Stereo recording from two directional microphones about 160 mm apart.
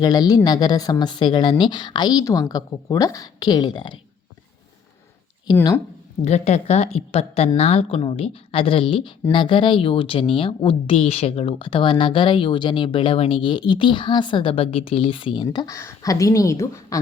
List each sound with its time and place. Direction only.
0.0 s speech: 25° left (ahead or behind)
6.2 s a woman's voice: 40° left (ahead or behind); by 17.0 s 20° left (ahead or behind)